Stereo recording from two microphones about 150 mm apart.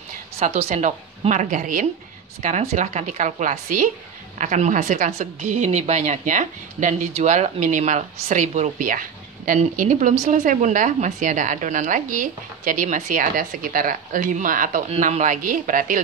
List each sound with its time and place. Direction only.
0.4 s a woman's voice: 45° right (ahead or behind); by 14.8 s 65° right (ahead or behind)
14.9 s speech: 50° right (ahead or behind)